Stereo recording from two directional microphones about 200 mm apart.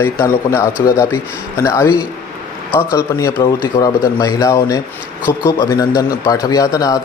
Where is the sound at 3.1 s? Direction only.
15° left (ahead or behind).